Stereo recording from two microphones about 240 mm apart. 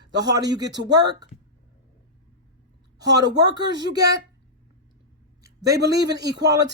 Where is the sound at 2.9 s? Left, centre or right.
Centre.